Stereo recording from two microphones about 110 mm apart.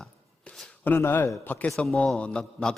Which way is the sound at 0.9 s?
20° left (ahead or behind).